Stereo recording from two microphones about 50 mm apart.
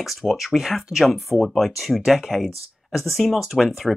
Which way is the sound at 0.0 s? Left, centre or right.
Centre.